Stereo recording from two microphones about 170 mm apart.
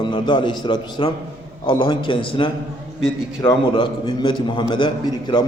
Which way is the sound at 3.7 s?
30° left (ahead or behind).